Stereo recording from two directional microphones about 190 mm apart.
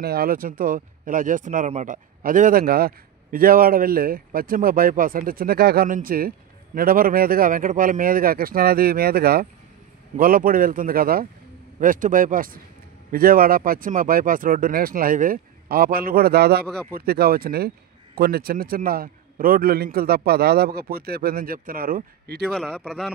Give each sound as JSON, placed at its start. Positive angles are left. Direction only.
{"t": 0.0, "sound": "speech", "side_deg": -55}
{"t": 22.5, "sound": "speech", "side_deg": 5}